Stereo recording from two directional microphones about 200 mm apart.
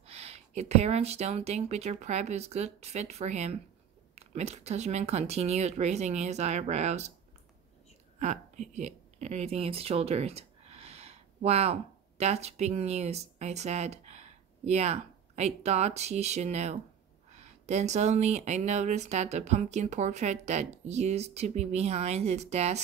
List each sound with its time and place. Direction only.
0.0 s speech: 30° right (ahead or behind)
8.2 s a woman's voice: 35° right (ahead or behind)